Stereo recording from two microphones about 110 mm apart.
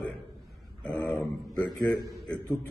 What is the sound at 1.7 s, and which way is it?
Speech, 35° left (ahead or behind).